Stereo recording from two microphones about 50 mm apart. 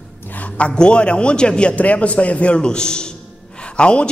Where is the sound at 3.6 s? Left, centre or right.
Centre.